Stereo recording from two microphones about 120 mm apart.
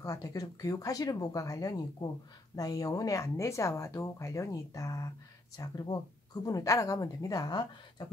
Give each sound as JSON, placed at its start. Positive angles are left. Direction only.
{"t": 0.0, "sound": "speech", "side_deg": 30}